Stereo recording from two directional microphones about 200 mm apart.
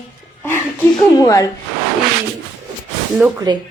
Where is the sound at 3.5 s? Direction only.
20° right (ahead or behind).